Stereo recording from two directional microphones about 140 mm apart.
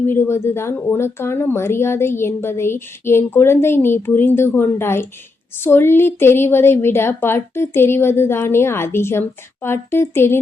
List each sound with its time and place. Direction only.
0.1 s speech: 20° left (ahead or behind)